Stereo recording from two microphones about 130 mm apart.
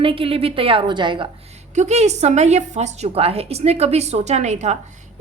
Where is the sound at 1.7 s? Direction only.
60° right (ahead or behind).